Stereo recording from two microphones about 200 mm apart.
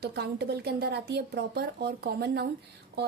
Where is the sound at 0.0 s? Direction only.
55° right (ahead or behind).